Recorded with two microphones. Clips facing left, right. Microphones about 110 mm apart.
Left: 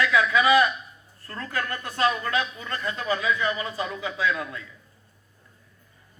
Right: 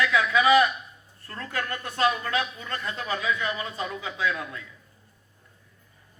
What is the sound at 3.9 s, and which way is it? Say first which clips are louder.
Speech: left 2 dB; 35° left (ahead or behind).